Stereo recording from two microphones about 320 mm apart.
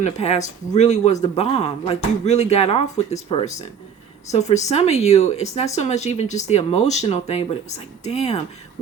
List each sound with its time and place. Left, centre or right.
0.0 s speech: left